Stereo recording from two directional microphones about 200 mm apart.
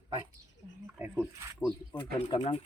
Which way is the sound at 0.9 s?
5° right (ahead or behind).